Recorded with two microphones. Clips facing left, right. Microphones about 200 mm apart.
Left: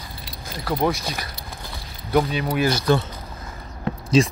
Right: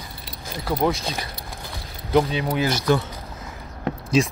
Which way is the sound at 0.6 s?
15° right (ahead or behind).